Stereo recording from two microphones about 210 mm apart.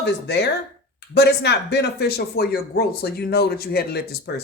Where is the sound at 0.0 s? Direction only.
55° left (ahead or behind).